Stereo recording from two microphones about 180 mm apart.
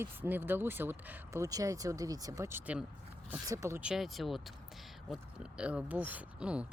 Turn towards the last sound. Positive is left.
turn(degrees=-5)  # may be behind; listen again after turning